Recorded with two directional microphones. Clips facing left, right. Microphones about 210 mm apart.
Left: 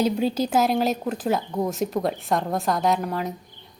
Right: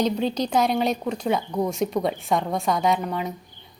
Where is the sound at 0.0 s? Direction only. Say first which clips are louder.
Left 1 dB; 5° left (ahead or behind).